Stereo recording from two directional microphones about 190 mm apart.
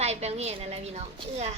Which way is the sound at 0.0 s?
35° right (ahead or behind).